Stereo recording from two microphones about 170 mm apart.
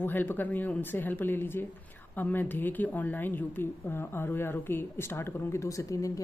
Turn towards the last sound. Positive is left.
turn(degrees=20)  # may be behind; listen again after turning